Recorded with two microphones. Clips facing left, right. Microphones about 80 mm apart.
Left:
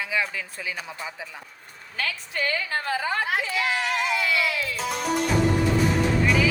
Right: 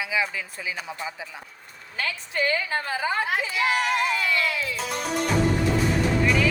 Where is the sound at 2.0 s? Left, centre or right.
Right; by 4.0 s centre.